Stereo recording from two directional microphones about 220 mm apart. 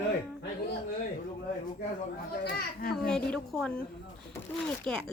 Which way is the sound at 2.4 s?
45° left (ahead or behind).